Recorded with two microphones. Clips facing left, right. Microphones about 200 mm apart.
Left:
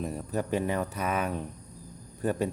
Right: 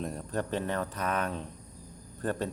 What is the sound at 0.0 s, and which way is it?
Speech, 5° left (ahead or behind).